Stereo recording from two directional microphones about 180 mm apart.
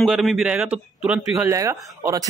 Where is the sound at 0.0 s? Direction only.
Centre (ahead or behind).